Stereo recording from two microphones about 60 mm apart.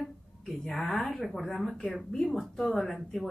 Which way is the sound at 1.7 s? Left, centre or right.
Centre.